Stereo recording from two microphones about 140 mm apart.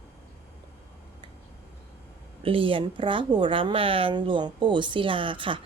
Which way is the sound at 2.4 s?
40° right (ahead or behind).